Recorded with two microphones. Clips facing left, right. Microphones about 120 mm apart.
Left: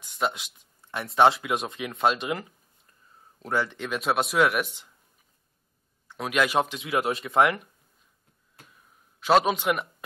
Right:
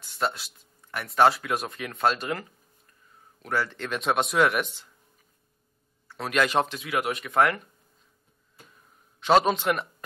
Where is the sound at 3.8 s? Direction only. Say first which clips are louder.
Even; 5° left (ahead or behind).